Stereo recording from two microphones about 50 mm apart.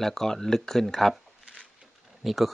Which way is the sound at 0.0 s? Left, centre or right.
Centre.